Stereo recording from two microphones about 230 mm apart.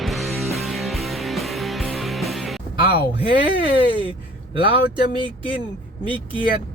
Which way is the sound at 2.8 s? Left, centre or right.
Left.